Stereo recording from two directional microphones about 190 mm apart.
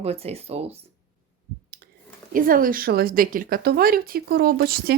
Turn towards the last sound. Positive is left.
turn(degrees=-55)  # may be behind; listen again after turning